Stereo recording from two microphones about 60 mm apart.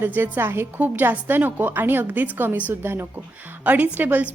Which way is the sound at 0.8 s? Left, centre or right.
Right.